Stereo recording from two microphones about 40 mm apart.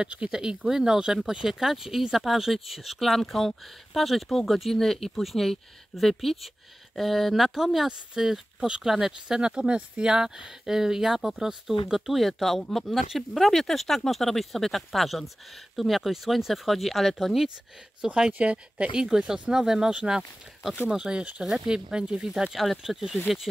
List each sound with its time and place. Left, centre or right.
0.3 s speech: centre
8.9 s speech: centre
9.4 s speech: right; by 17.5 s centre
18.0 s speech: centre
18.4 s speech: right
18.9 s speech: centre
21.7 s speech: centre